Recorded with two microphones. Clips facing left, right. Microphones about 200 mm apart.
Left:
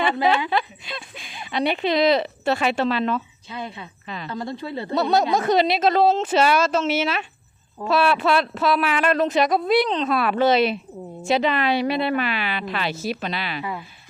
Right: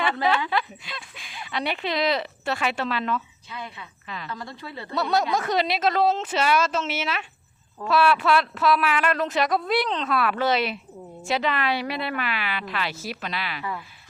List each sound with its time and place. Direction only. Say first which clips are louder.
0.0 s speech: left 3 dB; 20° left (ahead or behind)